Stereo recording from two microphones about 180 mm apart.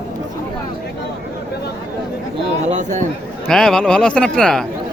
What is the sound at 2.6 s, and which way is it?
Speech, 40° right (ahead or behind).